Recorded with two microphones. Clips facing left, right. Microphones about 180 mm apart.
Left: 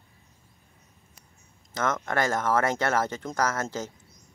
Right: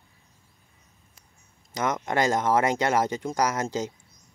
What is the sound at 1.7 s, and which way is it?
Speech, 15° right (ahead or behind).